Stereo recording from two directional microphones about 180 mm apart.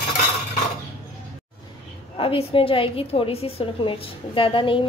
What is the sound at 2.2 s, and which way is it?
A woman's voice, 30° left (ahead or behind).